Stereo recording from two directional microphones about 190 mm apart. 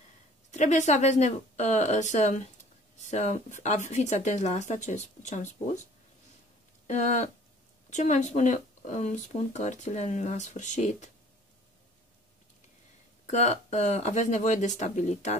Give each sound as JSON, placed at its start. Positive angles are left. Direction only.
{"t": 0.5, "sound": "speech", "side_deg": 40}
{"t": 6.9, "sound": "speech", "side_deg": 40}
{"t": 13.3, "sound": "speech", "side_deg": 40}